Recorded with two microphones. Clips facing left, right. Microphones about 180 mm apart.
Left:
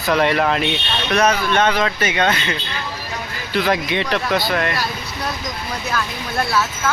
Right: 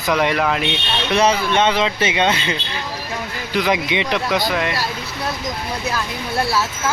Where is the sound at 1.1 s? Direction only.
25° right (ahead or behind).